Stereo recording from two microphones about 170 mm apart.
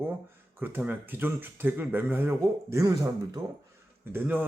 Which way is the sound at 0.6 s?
10° right (ahead or behind).